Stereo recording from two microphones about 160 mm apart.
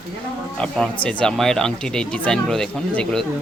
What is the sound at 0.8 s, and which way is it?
Speech, 5° left (ahead or behind).